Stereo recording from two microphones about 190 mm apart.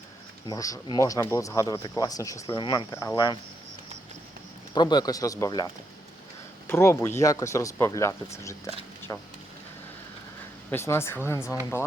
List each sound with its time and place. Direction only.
0.4 s speech: 20° left (ahead or behind)
4.7 s speech: 20° left (ahead or behind)
10.7 s speech: 10° left (ahead or behind)